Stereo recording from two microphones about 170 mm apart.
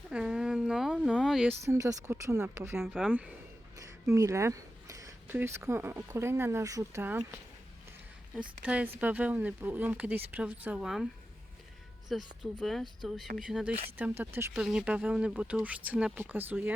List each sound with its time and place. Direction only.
0.1 s a sound: 5° right (ahead or behind)
1.5 s speech: 15° right (ahead or behind)
2.8 s speech: centre (ahead or behind)
3.8 s speech: 20° right (ahead or behind)
8.4 s speech: 5° right (ahead or behind)